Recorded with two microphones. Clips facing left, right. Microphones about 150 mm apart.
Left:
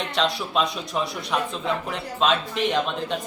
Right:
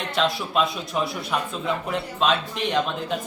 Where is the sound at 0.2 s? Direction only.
Centre (ahead or behind).